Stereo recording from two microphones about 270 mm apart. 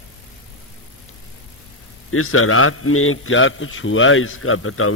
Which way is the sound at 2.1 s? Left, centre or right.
Left.